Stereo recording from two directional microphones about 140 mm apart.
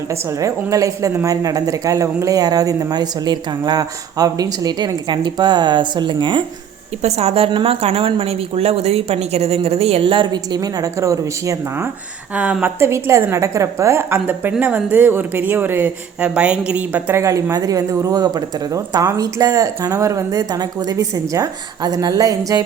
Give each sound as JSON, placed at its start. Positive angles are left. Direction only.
{"t": 0.1, "sound": "a woman's voice", "side_deg": -20}
{"t": 7.0, "sound": "a woman's voice", "side_deg": -50}
{"t": 12.3, "sound": "a woman's voice", "side_deg": -10}